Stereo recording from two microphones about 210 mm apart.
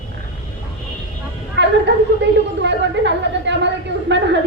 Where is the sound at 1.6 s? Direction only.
55° right (ahead or behind).